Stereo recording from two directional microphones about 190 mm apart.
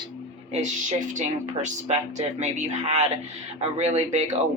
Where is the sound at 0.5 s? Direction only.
40° right (ahead or behind).